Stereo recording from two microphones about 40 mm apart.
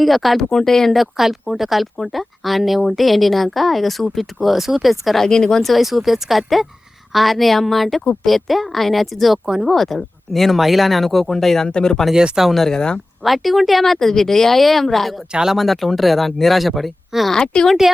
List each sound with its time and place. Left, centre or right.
0.0 s speech: centre
0.3 s speech: centre
0.9 s speech: centre
5.2 s speech: centre
5.6 s speech: centre
11.7 s a woman's voice: centre
12.1 s speech: centre
12.5 s speech: centre
12.7 s a woman's voice: left
13.2 s speech: centre
17.3 s a woman's voice: centre